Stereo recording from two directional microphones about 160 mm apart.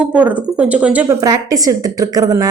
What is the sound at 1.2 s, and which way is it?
A woman's voice, 20° right (ahead or behind).